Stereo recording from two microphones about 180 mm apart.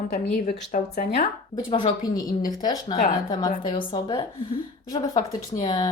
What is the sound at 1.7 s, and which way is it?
Speech, 25° left (ahead or behind).